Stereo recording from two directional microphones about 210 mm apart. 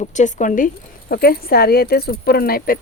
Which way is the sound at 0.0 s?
35° left (ahead or behind).